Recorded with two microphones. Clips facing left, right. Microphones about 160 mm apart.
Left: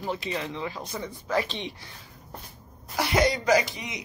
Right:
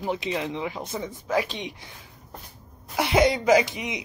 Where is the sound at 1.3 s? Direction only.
10° right (ahead or behind).